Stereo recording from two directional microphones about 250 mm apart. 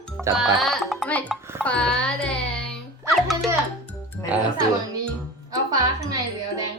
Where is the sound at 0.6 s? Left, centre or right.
Centre.